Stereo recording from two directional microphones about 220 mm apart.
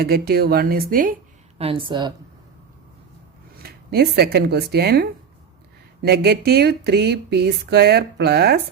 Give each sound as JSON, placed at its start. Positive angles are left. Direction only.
{"t": 0.0, "sound": "speech", "side_deg": -45}
{"t": 1.5, "sound": "a woman's voice", "side_deg": -25}
{"t": 3.6, "sound": "speech", "side_deg": -45}